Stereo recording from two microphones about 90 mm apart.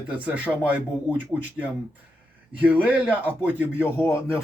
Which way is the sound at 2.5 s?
15° right (ahead or behind).